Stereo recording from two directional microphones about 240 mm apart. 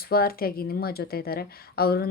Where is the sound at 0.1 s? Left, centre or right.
Left.